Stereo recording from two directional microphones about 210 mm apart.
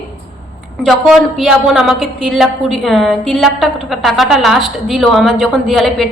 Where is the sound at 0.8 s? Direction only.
Centre (ahead or behind).